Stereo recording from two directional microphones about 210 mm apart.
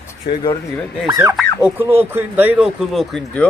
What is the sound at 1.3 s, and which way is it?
Speech, 5° right (ahead or behind).